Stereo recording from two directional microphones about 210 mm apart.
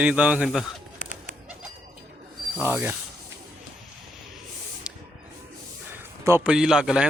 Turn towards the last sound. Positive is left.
turn(degrees=-5)  # may be behind; listen again after turning